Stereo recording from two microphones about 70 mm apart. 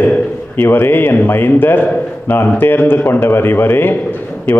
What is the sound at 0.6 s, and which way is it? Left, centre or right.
A man's voice, left.